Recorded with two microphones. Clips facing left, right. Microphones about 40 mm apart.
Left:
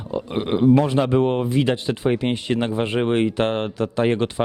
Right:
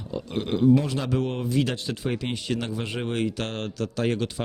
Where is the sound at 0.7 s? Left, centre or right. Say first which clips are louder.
Left 7 dB; left.